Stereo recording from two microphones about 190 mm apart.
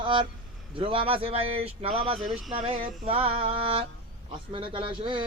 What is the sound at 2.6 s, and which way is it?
Mantra, 30° right (ahead or behind).